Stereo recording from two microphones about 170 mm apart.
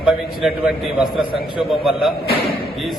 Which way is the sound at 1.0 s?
30° left (ahead or behind).